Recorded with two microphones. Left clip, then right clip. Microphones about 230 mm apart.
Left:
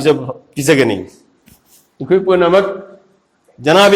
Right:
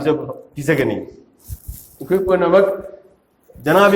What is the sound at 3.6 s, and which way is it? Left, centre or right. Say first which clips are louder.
Speech: left 4 dB; left.